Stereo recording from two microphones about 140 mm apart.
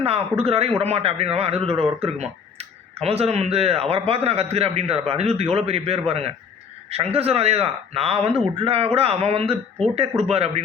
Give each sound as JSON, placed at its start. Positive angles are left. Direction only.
{"t": 0.0, "sound": "a man's voice", "side_deg": -45}